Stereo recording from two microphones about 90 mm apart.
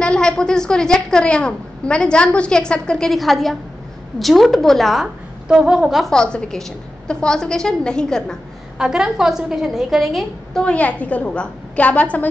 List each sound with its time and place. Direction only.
0.0 s a woman's voice: 10° left (ahead or behind)
6.1 s a woman's voice: 10° left (ahead or behind)
8.7 s a woman's voice: 5° right (ahead or behind)
10.6 s a woman's voice: 15° left (ahead or behind)